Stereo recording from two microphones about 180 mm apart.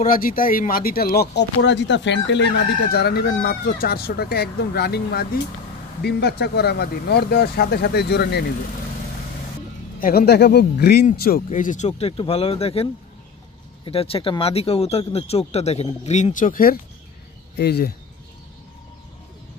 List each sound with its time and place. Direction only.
0.0 s speech: 50° left (ahead or behind)
9.9 s speech: 55° left (ahead or behind)
11.4 s speech: 45° left (ahead or behind)
13.8 s speech: 30° left (ahead or behind); by 16.7 s 50° left (ahead or behind)
17.6 s speech: 65° left (ahead or behind)